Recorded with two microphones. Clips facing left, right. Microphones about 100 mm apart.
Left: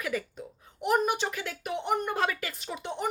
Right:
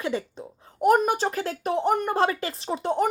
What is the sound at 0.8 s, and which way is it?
A woman's voice, 45° right (ahead or behind).